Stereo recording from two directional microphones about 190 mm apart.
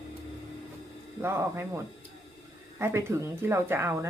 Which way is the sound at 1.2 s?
15° right (ahead or behind).